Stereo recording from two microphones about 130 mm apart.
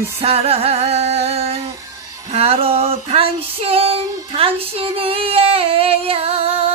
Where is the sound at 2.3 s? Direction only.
50° right (ahead or behind).